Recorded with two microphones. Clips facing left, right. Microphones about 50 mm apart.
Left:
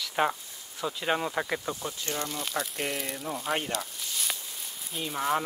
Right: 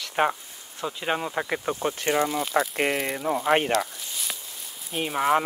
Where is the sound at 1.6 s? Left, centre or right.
Right.